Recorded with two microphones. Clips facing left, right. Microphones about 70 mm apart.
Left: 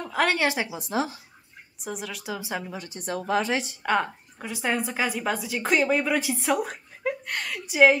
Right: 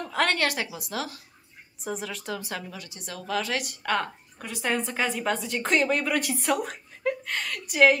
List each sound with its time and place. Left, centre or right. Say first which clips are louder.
0.0 s a woman's voice: left 2 dB; centre; by 1.2 s left
1.9 s speech: right 1 dB; centre
2.4 s speech: left 3 dB; centre
2.8 s speech: left 8 dB; left
3.8 s a woman's voice: left 3 dB; centre